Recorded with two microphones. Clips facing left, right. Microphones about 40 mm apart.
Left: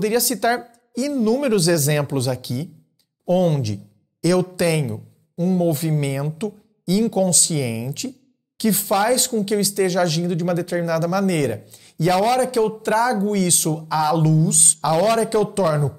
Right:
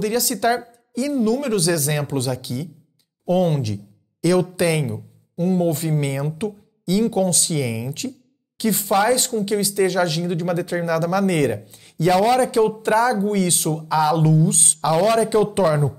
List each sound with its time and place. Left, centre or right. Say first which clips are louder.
0.0 s speech: left 1 dB; centre
0.9 s speech: even; centre
1.2 s speech: left 3 dB; centre
12.1 s speech: right 1 dB; centre
12.4 s speech: right 1 dB; centre
13.8 s speech: right 1 dB; centre
15.2 s speech: right 1 dB; centre